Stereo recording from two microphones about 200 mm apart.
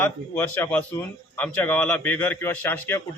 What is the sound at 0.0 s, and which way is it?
Speech, 10° left (ahead or behind).